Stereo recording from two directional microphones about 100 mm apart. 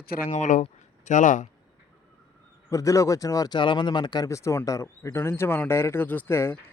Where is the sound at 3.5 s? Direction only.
50° left (ahead or behind).